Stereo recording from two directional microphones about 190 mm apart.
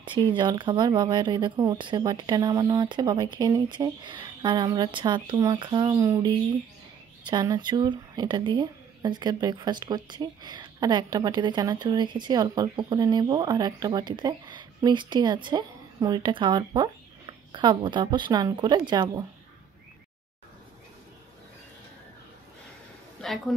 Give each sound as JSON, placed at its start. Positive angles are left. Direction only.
{"t": 0.1, "sound": "speech", "side_deg": -25}
{"t": 7.2, "sound": "speech", "side_deg": -20}
{"t": 23.2, "sound": "speech", "side_deg": 0}